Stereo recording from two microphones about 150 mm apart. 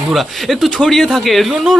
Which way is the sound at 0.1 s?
Centre (ahead or behind).